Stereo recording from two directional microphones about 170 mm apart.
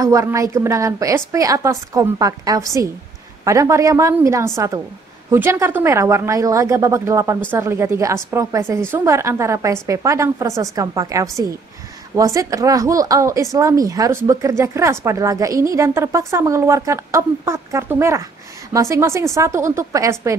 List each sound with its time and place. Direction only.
0.0 s a woman's voice: 20° right (ahead or behind)